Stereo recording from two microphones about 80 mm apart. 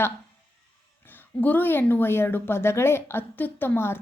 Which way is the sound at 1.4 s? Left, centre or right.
Left.